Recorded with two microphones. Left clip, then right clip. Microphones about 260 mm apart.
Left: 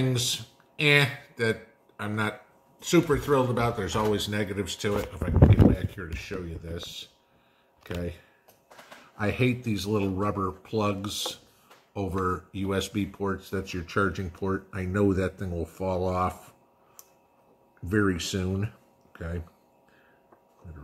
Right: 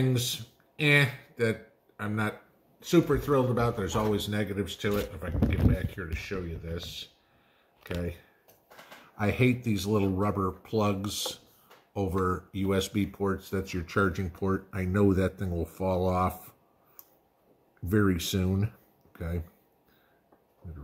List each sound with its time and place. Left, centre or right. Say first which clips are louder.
0.0 s speech: left 2 dB; centre
5.5 s speech: left 7 dB; centre
7.8 s speech: left 1 dB; centre
9.2 s speech: even; right
11.9 s speech: even; right
17.8 s speech: left 1 dB; right